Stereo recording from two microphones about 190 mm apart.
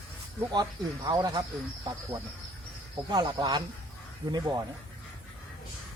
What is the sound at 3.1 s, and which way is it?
A man's voice, 25° right (ahead or behind).